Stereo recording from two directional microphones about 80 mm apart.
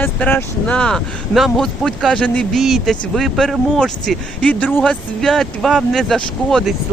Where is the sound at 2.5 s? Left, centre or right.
Centre.